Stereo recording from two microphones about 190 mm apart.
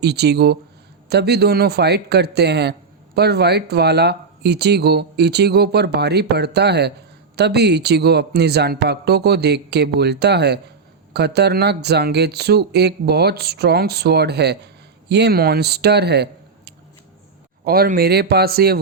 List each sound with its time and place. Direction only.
0.0 s speech: 60° right (ahead or behind)